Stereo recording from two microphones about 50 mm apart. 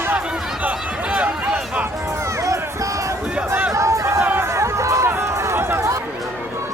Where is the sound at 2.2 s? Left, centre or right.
Right.